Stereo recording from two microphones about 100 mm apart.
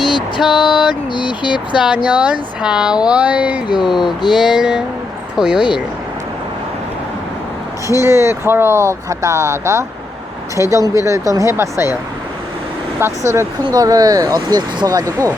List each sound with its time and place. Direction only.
0.4 s a sound: 5° right (ahead or behind)
1.1 s speech: 50° left (ahead or behind)
2.0 s speech: 15° right (ahead or behind)
8.0 s speech: 25° right (ahead or behind)
13.2 s speech: 30° right (ahead or behind)
13.7 s speech: 40° right (ahead or behind)